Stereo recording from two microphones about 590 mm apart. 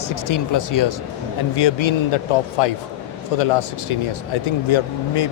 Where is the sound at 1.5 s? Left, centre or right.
Left.